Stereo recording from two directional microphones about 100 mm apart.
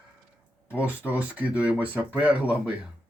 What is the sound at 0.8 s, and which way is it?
Speech, 15° right (ahead or behind).